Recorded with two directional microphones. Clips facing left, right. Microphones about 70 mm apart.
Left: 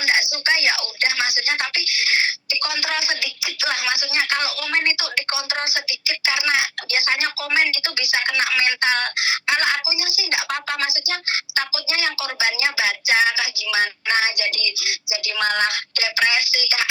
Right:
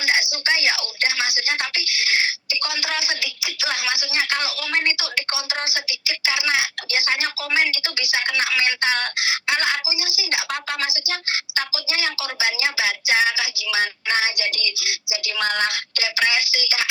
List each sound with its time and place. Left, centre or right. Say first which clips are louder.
0.0 s speech: left 1 dB; left